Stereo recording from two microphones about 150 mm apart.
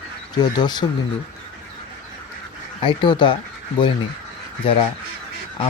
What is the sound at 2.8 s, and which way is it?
Speech, 30° left (ahead or behind).